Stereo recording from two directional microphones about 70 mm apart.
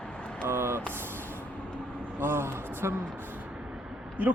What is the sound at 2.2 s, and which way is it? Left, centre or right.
Speech, right.